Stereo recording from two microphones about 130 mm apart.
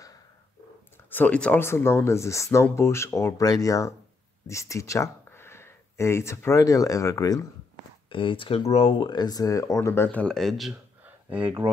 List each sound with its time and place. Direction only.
1.1 s speech: 10° left (ahead or behind)
8.1 s speech: 40° left (ahead or behind)
9.0 s speech: 35° left (ahead or behind); by 10.7 s centre (ahead or behind)
11.1 s speech: 10° right (ahead or behind)